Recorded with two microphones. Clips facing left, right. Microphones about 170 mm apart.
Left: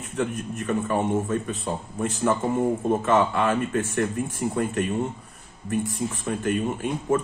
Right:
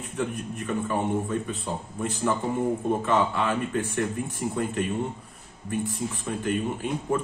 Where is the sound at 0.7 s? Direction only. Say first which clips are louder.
Left 3 dB; 45° left (ahead or behind).